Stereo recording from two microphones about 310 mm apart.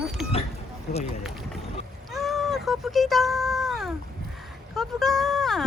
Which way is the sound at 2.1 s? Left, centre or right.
Centre.